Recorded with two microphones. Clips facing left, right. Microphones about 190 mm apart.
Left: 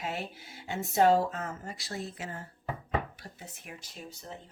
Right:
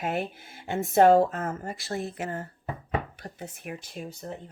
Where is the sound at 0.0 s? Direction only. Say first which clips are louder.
Right 7 dB; 55° right (ahead or behind).